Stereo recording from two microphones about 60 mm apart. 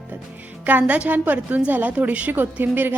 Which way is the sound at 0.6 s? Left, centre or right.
Right.